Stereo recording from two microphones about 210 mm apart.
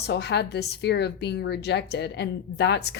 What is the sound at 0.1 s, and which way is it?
Speech, 50° left (ahead or behind).